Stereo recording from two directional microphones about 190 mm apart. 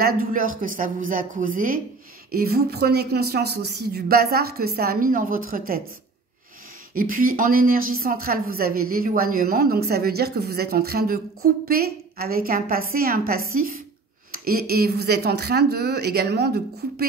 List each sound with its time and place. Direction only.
0.0 s a woman's voice: 45° right (ahead or behind)
6.9 s a woman's voice: 50° right (ahead or behind)